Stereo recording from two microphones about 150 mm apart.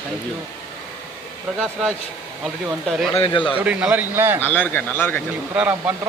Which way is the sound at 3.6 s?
10° right (ahead or behind).